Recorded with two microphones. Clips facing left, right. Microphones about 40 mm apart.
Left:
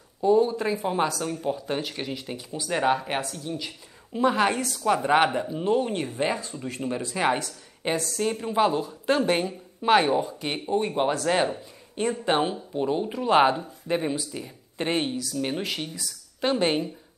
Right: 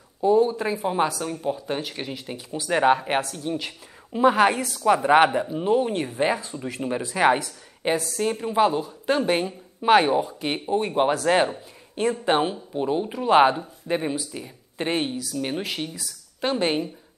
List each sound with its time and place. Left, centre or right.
0.2 s a woman's voice: centre
2.5 s speech: right
4.1 s a woman's voice: centre
7.8 s a woman's voice: centre